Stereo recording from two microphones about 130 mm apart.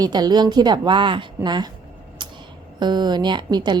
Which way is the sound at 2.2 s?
35° right (ahead or behind).